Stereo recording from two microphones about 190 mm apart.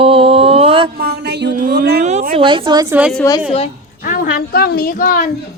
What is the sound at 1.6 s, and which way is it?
Speech, 50° right (ahead or behind).